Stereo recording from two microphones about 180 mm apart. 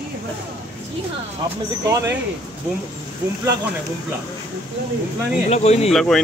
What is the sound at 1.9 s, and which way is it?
Speech, 15° right (ahead or behind).